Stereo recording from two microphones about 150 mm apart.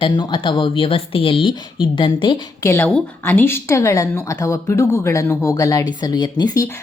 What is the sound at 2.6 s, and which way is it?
A woman's voice, 15° left (ahead or behind).